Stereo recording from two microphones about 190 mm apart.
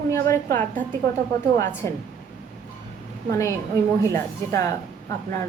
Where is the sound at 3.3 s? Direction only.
15° left (ahead or behind).